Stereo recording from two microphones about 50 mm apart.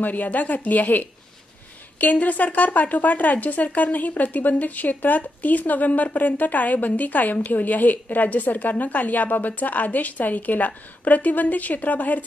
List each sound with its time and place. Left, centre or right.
0.0 s speech: left